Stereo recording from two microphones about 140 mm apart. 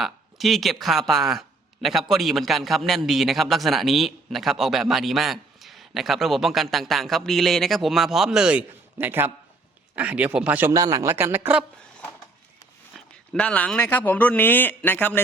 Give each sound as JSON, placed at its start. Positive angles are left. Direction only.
{"t": 0.0, "sound": "speech", "side_deg": 0}
{"t": 10.7, "sound": "a man's voice", "side_deg": -25}
{"t": 12.9, "sound": "a sound", "side_deg": 0}
{"t": 13.3, "sound": "speech", "side_deg": 10}